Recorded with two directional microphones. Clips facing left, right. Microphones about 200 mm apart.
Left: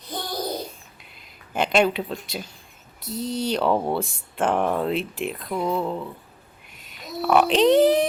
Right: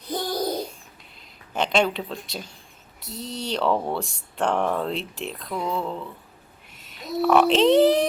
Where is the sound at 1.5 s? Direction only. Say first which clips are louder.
Left 2 dB; 5° left (ahead or behind).